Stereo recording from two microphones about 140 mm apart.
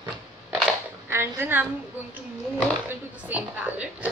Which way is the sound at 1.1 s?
15° right (ahead or behind).